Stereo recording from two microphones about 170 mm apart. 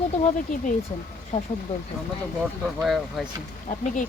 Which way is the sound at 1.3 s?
35° left (ahead or behind).